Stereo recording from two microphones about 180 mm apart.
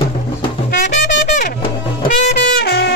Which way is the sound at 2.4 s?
65° left (ahead or behind).